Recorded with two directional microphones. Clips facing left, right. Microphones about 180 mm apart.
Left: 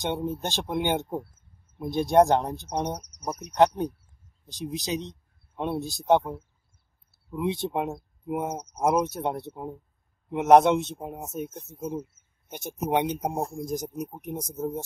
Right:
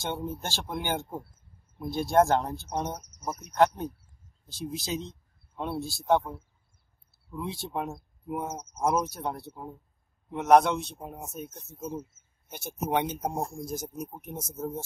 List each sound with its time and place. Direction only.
0.0 s speech: 20° left (ahead or behind)
12.4 s speech: 15° left (ahead or behind)